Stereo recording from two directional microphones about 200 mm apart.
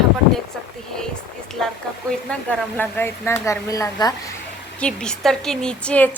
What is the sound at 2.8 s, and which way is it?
Speech, 10° left (ahead or behind).